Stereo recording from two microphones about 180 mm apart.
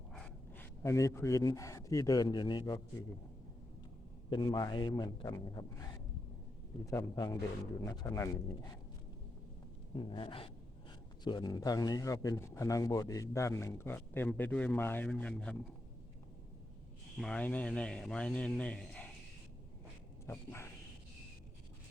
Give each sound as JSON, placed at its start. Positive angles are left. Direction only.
{"t": 0.1, "sound": "speech", "side_deg": 5}
{"t": 4.3, "sound": "a man's voice", "side_deg": 20}
{"t": 9.9, "sound": "a man's voice", "side_deg": 25}
{"t": 17.2, "sound": "speech", "side_deg": 5}
{"t": 20.2, "sound": "speech", "side_deg": 15}